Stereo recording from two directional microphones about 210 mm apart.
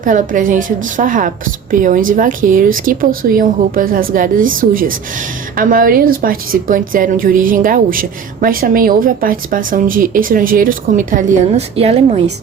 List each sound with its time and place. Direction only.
0.0 s a woman's voice: 40° right (ahead or behind)